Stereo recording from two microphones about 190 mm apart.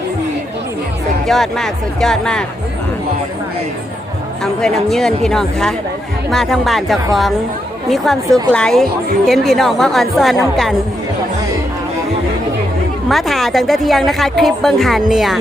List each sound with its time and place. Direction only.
1.3 s a woman's voice: centre (ahead or behind)
4.6 s a woman's voice: centre (ahead or behind)
13.1 s a woman's voice: centre (ahead or behind)